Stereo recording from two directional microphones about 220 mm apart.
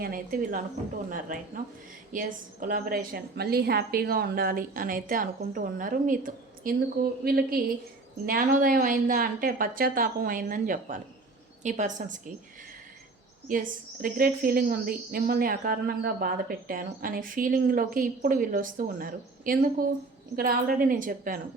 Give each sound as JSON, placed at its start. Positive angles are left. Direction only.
{"t": 0.0, "sound": "a woman's voice", "side_deg": -40}
{"t": 2.1, "sound": "a woman's voice", "side_deg": -40}
{"t": 13.5, "sound": "a woman's voice", "side_deg": -40}